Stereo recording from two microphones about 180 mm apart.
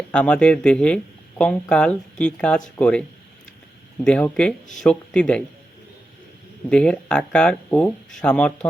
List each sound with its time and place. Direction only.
0.1 s speech: 5° left (ahead or behind)
6.7 s speech: 5° left (ahead or behind)